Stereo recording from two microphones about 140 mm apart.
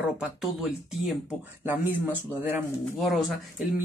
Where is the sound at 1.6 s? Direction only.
15° right (ahead or behind).